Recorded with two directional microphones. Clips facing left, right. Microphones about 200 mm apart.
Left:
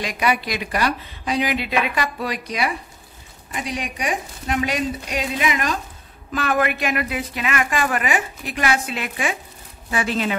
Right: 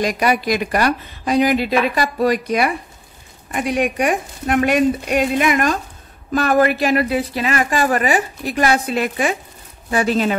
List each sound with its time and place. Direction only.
0.0 s a woman's voice: 40° right (ahead or behind)